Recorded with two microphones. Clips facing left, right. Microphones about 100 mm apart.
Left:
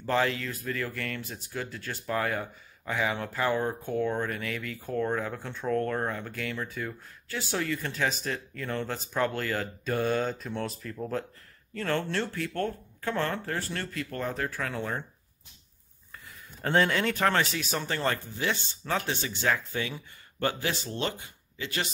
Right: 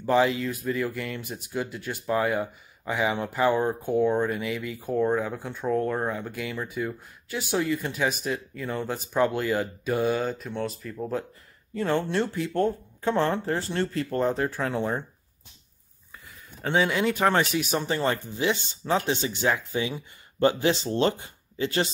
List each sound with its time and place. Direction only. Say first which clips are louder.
0.0 s speech: right 5 dB; 15° right (ahead or behind)
11.7 s speech: right 4 dB; 15° right (ahead or behind)
16.6 s speech: right 2 dB; 5° right (ahead or behind); by 21.8 s 30° right (ahead or behind)